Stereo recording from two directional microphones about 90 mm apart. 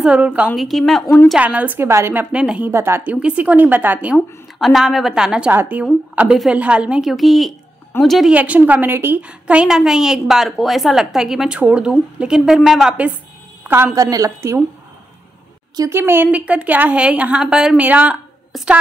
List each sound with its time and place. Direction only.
0.0 s a woman's voice: 15° right (ahead or behind)
0.6 s a woman's voice: centre (ahead or behind)
1.4 s a woman's voice: 15° right (ahead or behind)
1.9 s a woman's voice: 30° right (ahead or behind)
2.1 s a woman's voice: 10° right (ahead or behind)
2.7 s a woman's voice: 25° right (ahead or behind)
4.6 s a woman's voice: centre (ahead or behind)
5.5 s a woman's voice: 20° right (ahead or behind); by 8.3 s centre (ahead or behind)
8.3 s a woman's voice: 15° right (ahead or behind)
13.9 s a woman's voice: 40° right (ahead or behind)
15.9 s a woman's voice: 25° right (ahead or behind)
18.5 s a woman's voice: centre (ahead or behind)